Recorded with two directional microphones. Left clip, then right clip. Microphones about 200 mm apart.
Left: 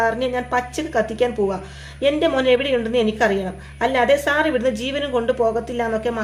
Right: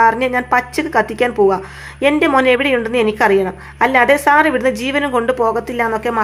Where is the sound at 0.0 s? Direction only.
25° right (ahead or behind).